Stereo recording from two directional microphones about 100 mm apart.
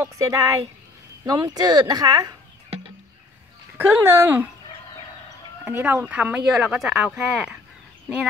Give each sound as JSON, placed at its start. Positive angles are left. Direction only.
{"t": 0.0, "sound": "speech", "side_deg": -30}
{"t": 3.7, "sound": "speech", "side_deg": -25}
{"t": 5.7, "sound": "speech", "side_deg": -20}